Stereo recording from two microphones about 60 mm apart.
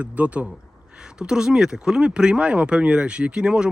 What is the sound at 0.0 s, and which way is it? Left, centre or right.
A man's voice, right.